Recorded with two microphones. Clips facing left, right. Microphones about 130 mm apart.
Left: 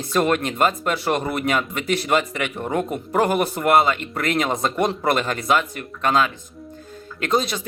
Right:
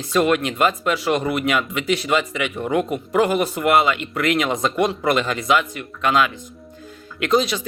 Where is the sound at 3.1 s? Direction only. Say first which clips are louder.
Right 1 dB; 45° left (ahead or behind).